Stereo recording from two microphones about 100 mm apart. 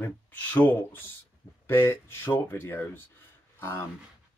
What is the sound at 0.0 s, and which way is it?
Speech, 15° left (ahead or behind).